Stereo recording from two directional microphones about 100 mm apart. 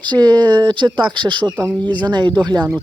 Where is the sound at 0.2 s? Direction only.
45° right (ahead or behind).